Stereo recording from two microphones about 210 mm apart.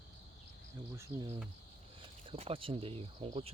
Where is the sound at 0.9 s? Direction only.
15° right (ahead or behind).